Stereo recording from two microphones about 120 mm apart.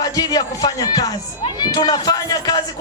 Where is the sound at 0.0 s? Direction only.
30° left (ahead or behind).